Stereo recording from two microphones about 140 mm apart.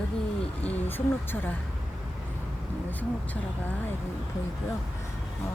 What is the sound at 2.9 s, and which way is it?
Speech, 10° left (ahead or behind).